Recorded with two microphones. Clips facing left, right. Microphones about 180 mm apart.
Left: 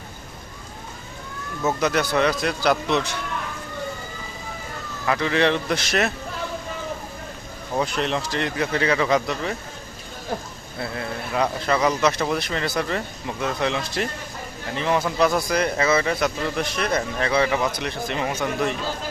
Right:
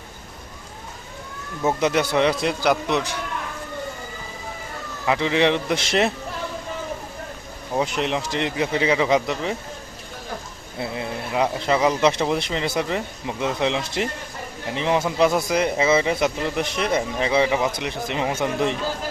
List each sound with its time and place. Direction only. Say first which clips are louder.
1.6 s speech: right 2 dB; 20° right (ahead or behind)
5.0 s speech: right 1 dB; 20° right (ahead or behind)
7.8 s speech: right 1 dB; 15° right (ahead or behind)
10.8 s speech: right 1 dB; 15° right (ahead or behind)